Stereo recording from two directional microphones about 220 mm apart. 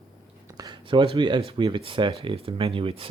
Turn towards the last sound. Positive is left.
turn(degrees=-25)  # may be behind; listen again after turning